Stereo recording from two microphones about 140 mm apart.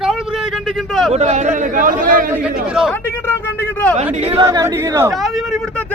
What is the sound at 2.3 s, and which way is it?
Speech, 5° right (ahead or behind).